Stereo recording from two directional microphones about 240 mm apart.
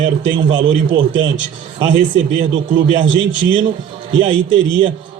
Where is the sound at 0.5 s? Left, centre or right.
Right.